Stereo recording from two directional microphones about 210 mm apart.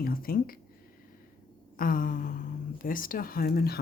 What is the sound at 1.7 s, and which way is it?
Speech, 40° left (ahead or behind).